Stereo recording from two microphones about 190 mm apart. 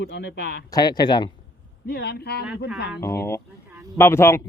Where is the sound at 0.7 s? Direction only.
20° left (ahead or behind).